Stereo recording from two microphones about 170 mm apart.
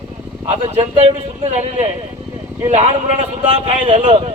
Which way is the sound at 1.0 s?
40° right (ahead or behind).